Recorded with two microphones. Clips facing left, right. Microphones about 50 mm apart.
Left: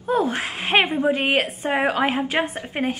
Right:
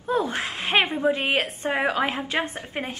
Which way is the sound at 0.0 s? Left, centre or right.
Left.